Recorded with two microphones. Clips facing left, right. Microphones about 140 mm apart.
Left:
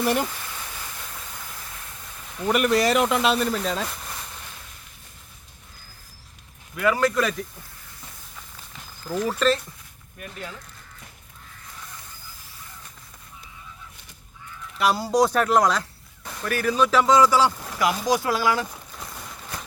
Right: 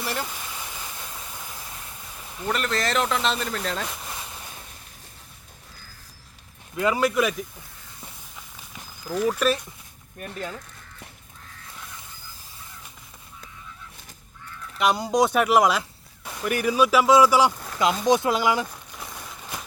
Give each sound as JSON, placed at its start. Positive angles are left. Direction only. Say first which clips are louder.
{"t": 0.0, "sound": "speech", "louder": "left 7 dB", "side_deg": 15}
{"t": 0.3, "sound": "vehicle", "louder": "even", "side_deg": -15}
{"t": 2.5, "sound": "speech", "louder": "left 6 dB", "side_deg": 10}
{"t": 6.7, "sound": "speech", "louder": "even", "side_deg": -20}
{"t": 9.0, "sound": "speech", "louder": "even", "side_deg": -5}
{"t": 14.8, "sound": "speech", "louder": "left 1 dB", "side_deg": 5}
{"t": 18.9, "sound": "a sound", "louder": "right 1 dB", "side_deg": 0}